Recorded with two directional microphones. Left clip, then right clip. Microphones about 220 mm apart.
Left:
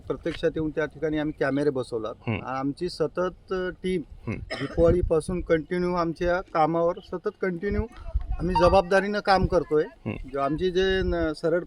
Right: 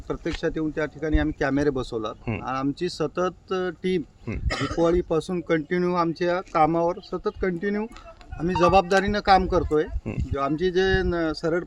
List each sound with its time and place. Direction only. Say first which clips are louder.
0.1 s speech: left 1 dB; 5° left (ahead or behind)
4.4 s speech: right 6 dB; 30° right (ahead or behind)
4.8 s speech: left 1 dB; centre (ahead or behind)